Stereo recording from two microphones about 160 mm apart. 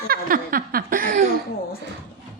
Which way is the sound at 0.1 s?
65° right (ahead or behind).